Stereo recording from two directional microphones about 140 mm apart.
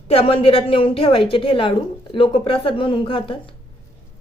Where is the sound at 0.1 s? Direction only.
45° left (ahead or behind).